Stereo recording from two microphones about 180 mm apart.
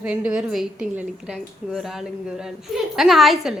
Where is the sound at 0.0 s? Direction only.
5° right (ahead or behind).